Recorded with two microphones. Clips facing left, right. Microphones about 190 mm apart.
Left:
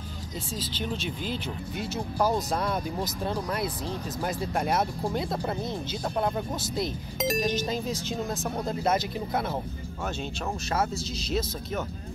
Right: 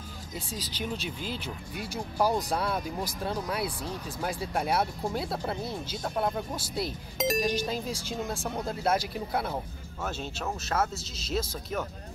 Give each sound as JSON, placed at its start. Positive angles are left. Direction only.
{"t": 0.8, "sound": "speech", "side_deg": -5}
{"t": 10.7, "sound": "speech", "side_deg": 0}